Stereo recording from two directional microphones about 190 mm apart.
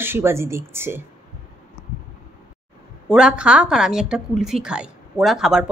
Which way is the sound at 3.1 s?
5° right (ahead or behind).